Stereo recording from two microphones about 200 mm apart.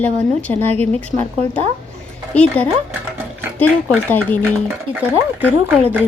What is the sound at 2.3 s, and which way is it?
Speech, 5° left (ahead or behind).